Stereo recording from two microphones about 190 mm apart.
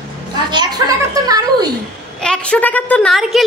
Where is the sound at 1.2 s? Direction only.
20° right (ahead or behind).